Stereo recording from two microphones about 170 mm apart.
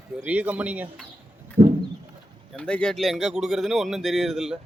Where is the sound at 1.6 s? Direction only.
25° right (ahead or behind).